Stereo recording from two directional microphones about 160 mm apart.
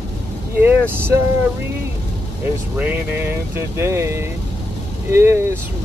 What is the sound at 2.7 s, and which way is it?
Speech, 10° right (ahead or behind).